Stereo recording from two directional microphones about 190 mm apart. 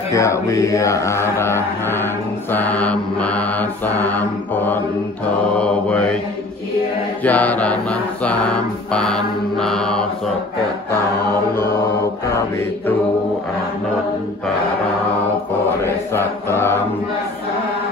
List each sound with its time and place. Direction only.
0.1 s mantra: 15° left (ahead or behind)
7.2 s mantra: 10° left (ahead or behind)
15.8 s chant: 15° left (ahead or behind)